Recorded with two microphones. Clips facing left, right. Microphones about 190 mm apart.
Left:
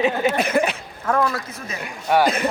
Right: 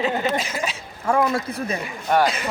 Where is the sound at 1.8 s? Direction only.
5° left (ahead or behind).